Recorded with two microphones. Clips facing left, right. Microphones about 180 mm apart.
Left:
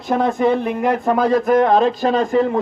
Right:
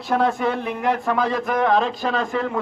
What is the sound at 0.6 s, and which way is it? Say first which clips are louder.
A man's voice: left 4 dB; 45° left (ahead or behind).